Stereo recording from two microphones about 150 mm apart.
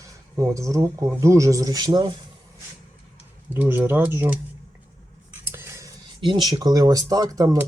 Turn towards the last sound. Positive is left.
turn(degrees=-25)  # may be behind; listen again after turning